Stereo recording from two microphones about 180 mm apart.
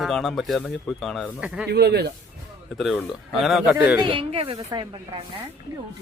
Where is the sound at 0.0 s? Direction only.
Centre (ahead or behind).